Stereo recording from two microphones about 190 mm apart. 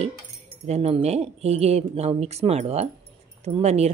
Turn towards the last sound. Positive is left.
turn(degrees=-35)  # may be behind; listen again after turning